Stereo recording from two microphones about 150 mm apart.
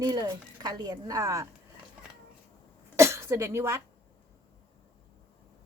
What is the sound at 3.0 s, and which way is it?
Speech, 15° right (ahead or behind).